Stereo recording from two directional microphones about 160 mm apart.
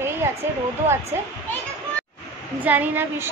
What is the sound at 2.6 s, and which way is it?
Speech, 10° right (ahead or behind).